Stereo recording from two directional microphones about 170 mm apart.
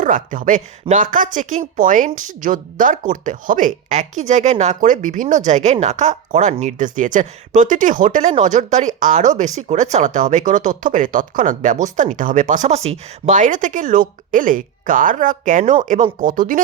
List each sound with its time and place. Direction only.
0.0 s speech: 50° right (ahead or behind)